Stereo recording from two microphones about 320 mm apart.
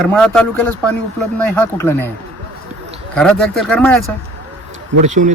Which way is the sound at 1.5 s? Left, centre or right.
Centre.